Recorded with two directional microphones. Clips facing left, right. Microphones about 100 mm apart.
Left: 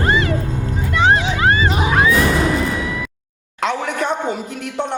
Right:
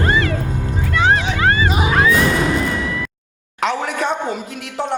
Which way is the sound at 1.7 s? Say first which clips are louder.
Even; 10° right (ahead or behind).